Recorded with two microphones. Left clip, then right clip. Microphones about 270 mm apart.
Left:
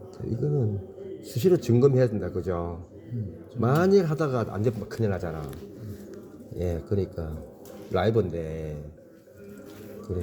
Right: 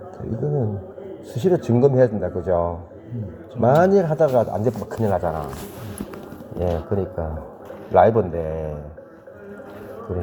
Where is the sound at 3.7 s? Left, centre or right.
Left.